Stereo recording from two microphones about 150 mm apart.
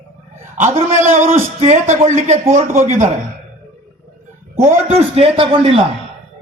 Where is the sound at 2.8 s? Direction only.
55° right (ahead or behind).